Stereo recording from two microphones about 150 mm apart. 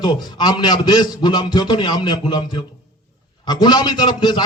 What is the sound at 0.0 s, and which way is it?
Speech, 30° left (ahead or behind).